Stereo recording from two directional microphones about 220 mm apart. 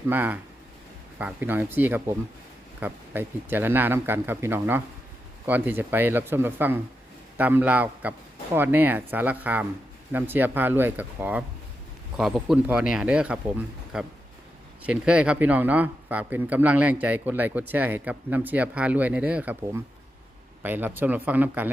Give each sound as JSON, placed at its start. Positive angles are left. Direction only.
{"t": 0.1, "sound": "a man's voice", "side_deg": -10}